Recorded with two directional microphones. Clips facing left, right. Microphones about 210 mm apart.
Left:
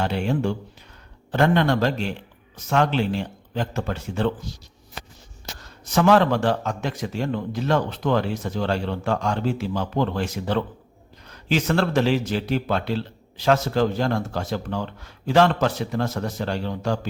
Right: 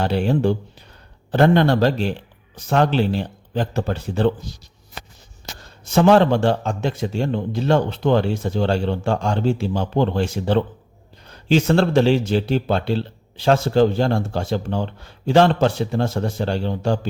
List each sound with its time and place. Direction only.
0.0 s speech: 35° right (ahead or behind)
5.6 s speech: 30° right (ahead or behind)